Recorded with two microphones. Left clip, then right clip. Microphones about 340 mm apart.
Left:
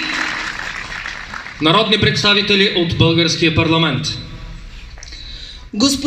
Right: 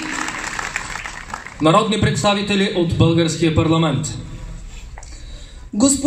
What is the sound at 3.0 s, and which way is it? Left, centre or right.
Speech, right.